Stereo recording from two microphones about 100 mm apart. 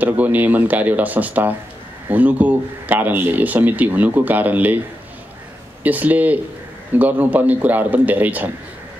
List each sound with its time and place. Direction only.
0.0 s speech: 15° right (ahead or behind)
5.9 s speech: 15° right (ahead or behind)